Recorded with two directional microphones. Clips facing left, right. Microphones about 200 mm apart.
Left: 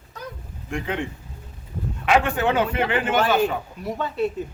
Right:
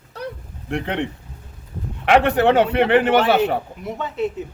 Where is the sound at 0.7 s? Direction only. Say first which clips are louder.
Right 4 dB; 65° right (ahead or behind).